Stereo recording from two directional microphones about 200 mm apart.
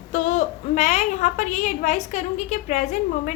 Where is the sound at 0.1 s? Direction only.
35° left (ahead or behind).